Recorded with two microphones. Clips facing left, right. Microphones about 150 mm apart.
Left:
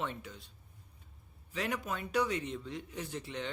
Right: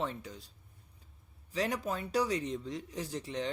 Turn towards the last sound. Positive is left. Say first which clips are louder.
# right 3 dB
turn(degrees=-35)  # may be behind; listen again after turning